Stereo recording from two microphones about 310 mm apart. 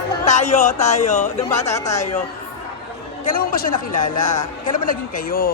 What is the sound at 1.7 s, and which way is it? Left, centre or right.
Speech, centre.